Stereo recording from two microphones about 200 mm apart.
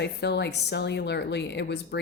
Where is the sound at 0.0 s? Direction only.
55° left (ahead or behind).